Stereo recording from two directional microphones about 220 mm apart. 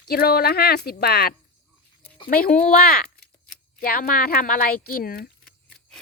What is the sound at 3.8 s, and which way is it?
A woman's voice, 40° left (ahead or behind).